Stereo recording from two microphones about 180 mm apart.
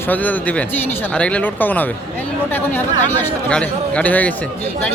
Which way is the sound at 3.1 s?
10° left (ahead or behind).